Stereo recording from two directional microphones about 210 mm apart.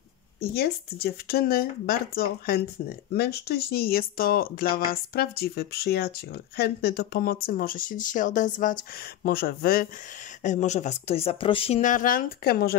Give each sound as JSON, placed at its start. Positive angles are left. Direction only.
{"t": 0.4, "sound": "speech", "side_deg": 50}
{"t": 10.4, "sound": "speech", "side_deg": 35}